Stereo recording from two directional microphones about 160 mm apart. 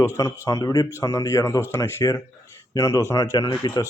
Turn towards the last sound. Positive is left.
turn(degrees=25)  # may be behind; listen again after turning